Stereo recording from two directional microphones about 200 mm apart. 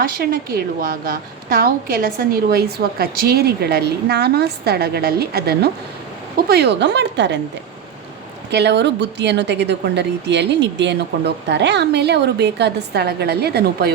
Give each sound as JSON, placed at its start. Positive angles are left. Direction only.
{"t": 0.2, "sound": "a woman's voice", "side_deg": -50}
{"t": 8.4, "sound": "a woman's voice", "side_deg": -60}